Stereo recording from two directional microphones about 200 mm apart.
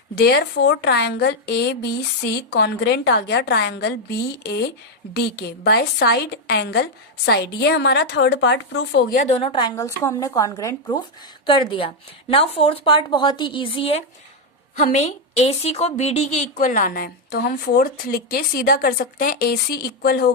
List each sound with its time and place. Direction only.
0.2 s a woman's voice: 55° left (ahead or behind)
9.3 s a woman's voice: 25° left (ahead or behind); by 20.3 s 50° left (ahead or behind)